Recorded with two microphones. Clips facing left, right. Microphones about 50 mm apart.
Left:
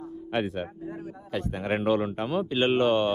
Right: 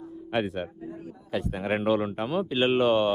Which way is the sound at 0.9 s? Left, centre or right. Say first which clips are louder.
Left 2 dB; left.